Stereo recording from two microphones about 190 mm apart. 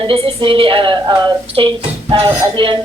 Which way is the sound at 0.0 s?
30° right (ahead or behind).